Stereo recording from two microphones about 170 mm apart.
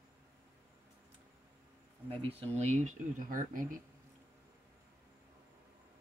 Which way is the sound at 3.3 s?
50° right (ahead or behind).